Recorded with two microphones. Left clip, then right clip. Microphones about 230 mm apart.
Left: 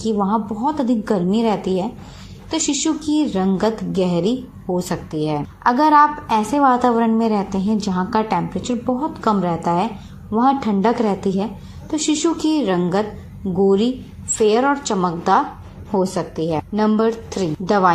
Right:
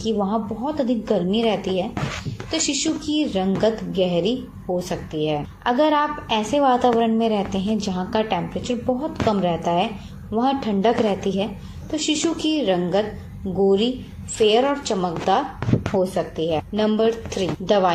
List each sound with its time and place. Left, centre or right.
0.0 s a woman's voice: left